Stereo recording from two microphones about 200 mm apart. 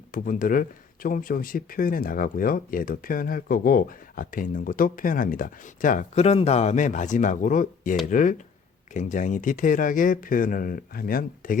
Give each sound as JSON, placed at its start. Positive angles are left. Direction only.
{"t": 0.1, "sound": "speech", "side_deg": 45}